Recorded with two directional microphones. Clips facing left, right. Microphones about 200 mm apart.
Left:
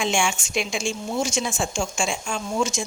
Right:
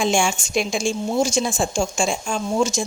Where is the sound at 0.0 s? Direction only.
35° right (ahead or behind).